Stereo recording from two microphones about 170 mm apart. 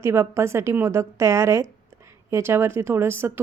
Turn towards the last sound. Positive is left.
turn(degrees=-15)  # may be behind; listen again after turning